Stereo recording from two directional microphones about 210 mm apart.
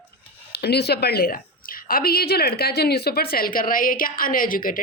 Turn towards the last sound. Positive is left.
turn(degrees=40)  # may be behind; listen again after turning